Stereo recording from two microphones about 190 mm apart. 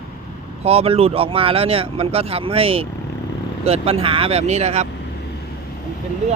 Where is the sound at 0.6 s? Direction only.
30° right (ahead or behind).